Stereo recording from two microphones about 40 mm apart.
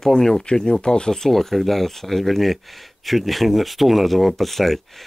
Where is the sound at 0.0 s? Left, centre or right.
Centre.